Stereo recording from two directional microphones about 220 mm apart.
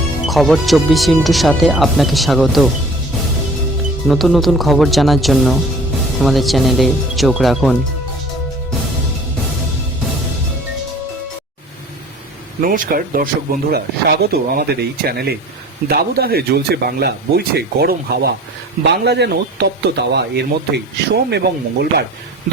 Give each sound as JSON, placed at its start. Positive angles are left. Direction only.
{"t": 0.3, "sound": "speech", "side_deg": 0}
{"t": 4.1, "sound": "speech", "side_deg": 0}
{"t": 12.6, "sound": "speech", "side_deg": -40}